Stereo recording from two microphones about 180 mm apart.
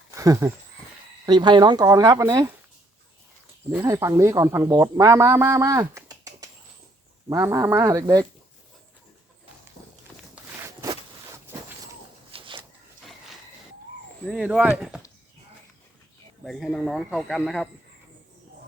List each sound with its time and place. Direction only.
0.2 s speech: 15° right (ahead or behind)
3.7 s speech: 15° right (ahead or behind)
9.8 s walk: 35° left (ahead or behind)
12.3 s a sound: 30° right (ahead or behind)
14.3 s speech: 5° right (ahead or behind)
16.4 s speech: centre (ahead or behind)